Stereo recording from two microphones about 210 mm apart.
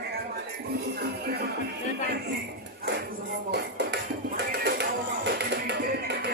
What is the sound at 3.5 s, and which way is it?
Music, 55° right (ahead or behind).